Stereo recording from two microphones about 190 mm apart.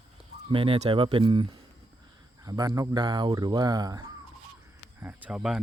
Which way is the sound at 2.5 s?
20° right (ahead or behind).